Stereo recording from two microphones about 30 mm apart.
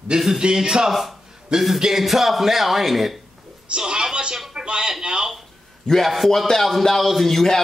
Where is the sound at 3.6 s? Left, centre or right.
Right.